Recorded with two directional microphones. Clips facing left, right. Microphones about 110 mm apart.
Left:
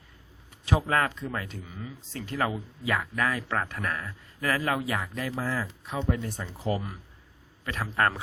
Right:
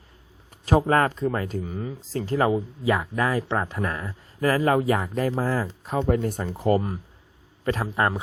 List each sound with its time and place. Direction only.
0.6 s a man's voice: 40° right (ahead or behind)
7.9 s a man's voice: 15° right (ahead or behind)